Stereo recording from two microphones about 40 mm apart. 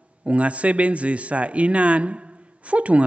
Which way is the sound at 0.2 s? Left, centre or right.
Right.